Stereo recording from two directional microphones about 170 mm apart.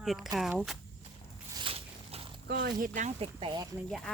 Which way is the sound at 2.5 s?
60° right (ahead or behind).